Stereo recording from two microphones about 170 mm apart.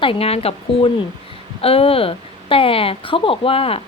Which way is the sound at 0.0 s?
35° left (ahead or behind).